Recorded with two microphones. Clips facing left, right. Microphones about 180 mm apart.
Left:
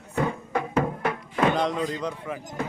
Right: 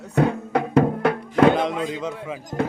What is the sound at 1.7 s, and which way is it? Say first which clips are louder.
Speech: right 2 dB; 15° right (ahead or behind).